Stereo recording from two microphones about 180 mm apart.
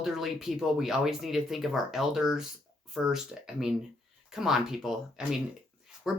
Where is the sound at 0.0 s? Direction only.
Centre (ahead or behind).